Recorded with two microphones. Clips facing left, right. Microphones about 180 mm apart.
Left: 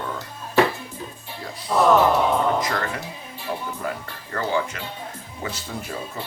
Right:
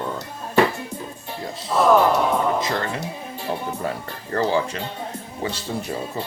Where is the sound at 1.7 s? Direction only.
Centre (ahead or behind).